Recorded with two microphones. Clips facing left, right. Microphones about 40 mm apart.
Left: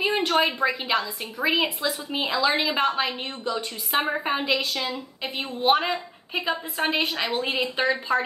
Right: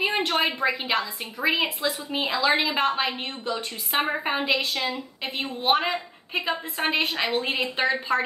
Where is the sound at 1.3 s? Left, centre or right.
Centre.